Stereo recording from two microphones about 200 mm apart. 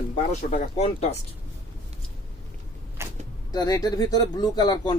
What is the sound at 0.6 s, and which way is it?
Speech, 35° left (ahead or behind).